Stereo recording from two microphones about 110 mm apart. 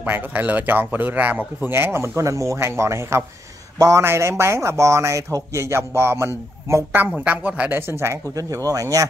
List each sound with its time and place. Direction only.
0.0 s speech: 15° right (ahead or behind); by 9.0 s 30° right (ahead or behind)